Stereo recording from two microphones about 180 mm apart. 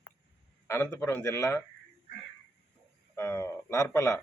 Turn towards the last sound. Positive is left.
turn(degrees=20)  # may be behind; listen again after turning